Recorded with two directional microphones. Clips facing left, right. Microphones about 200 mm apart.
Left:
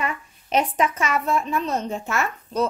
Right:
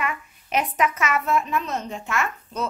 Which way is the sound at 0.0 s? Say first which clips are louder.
Left 1 dB; 30° left (ahead or behind).